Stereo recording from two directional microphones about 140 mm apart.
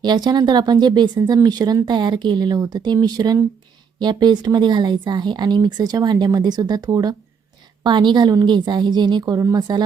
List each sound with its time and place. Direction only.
0.0 s speech: 30° right (ahead or behind)